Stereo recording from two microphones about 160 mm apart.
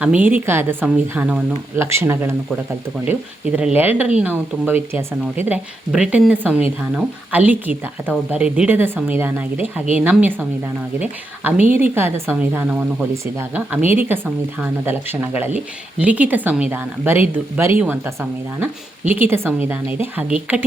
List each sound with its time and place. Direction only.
0.0 s speech: 10° right (ahead or behind)